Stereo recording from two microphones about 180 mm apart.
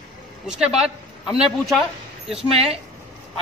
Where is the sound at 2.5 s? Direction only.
35° right (ahead or behind).